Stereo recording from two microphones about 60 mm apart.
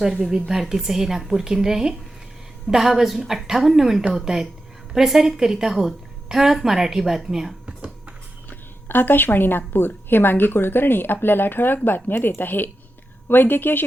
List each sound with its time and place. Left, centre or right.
0.0 s a woman's voice: centre
8.4 s a woman's voice: left